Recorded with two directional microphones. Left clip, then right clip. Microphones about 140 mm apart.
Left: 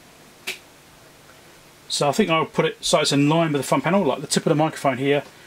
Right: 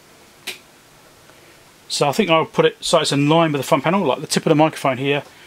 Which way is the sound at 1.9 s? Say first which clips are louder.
Right 3 dB; 20° right (ahead or behind).